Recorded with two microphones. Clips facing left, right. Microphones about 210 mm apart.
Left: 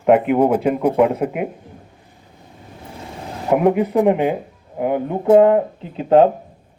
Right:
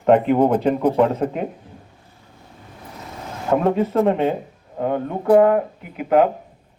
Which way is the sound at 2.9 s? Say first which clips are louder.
Left 2 dB; 30° left (ahead or behind).